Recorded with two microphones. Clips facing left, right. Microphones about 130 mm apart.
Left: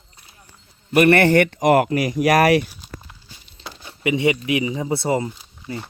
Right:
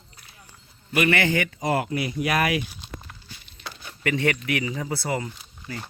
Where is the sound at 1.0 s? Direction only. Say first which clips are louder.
Left 8 dB; 60° left (ahead or behind); by 2.6 s 75° left (ahead or behind).